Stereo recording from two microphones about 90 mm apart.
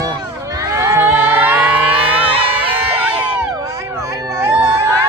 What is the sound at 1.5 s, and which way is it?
Siren, 15° right (ahead or behind).